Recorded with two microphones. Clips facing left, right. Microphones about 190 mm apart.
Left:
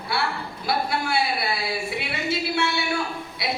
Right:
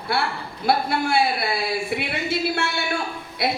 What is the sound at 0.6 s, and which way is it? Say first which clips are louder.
A woman's voice: right 4 dB; 55° right (ahead or behind).